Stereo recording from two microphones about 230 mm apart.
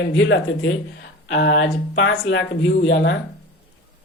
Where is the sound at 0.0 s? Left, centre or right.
Left.